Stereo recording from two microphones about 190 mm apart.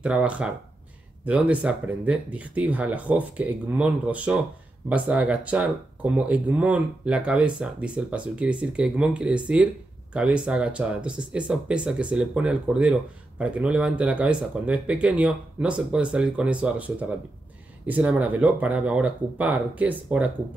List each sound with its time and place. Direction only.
0.0 s speech: 5° right (ahead or behind)